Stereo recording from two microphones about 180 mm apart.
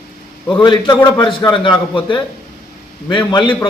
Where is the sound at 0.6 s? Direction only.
25° left (ahead or behind).